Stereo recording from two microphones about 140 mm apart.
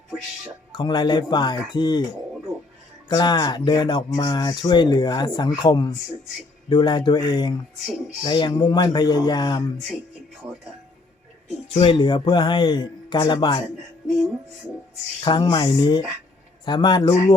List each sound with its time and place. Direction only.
0.7 s speech: 30° left (ahead or behind)
3.1 s speech: 30° left (ahead or behind)
11.7 s speech: 40° left (ahead or behind)
15.2 s speech: 35° left (ahead or behind)